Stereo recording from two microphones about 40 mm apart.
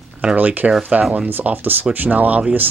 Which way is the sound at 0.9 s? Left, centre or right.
Right.